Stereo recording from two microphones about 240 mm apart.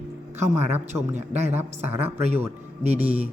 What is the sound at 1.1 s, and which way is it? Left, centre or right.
Speech, right.